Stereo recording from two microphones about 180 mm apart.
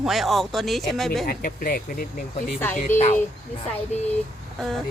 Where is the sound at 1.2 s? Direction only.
55° left (ahead or behind).